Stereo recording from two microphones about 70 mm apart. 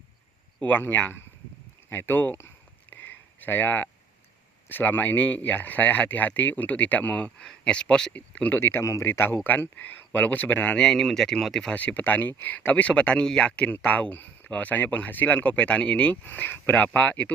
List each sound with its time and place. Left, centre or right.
0.6 s speech: left
2.9 s a sound: left
4.7 s speech: left
8.5 s speech: left
10.8 s speech: centre
11.7 s speech: left
16.2 s speech: left